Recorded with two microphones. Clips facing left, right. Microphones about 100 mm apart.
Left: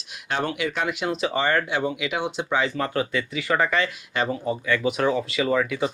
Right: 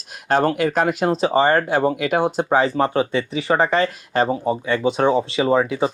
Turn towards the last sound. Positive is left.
turn(degrees=-30)  # may be behind; listen again after turning